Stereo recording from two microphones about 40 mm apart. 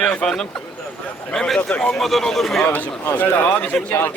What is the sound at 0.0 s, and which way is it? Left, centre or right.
Speech, left.